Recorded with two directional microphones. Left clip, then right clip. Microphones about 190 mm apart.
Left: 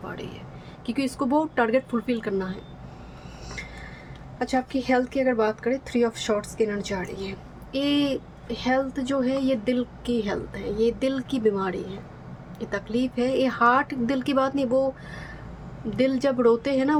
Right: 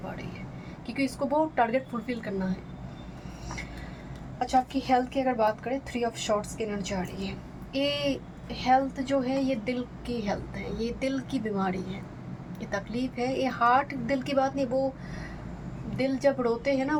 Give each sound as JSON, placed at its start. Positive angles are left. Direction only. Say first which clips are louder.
{"t": 0.9, "sound": "speech", "louder": "left 2 dB", "side_deg": 45}
{"t": 4.4, "sound": "speech", "louder": "even", "side_deg": 40}
{"t": 16.0, "sound": "speech", "louder": "left 3 dB", "side_deg": 45}